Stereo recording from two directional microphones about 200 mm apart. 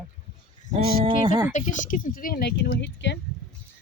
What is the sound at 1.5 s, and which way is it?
Speech, 40° left (ahead or behind).